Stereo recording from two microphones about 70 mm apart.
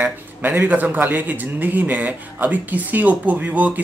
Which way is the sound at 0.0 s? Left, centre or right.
Right.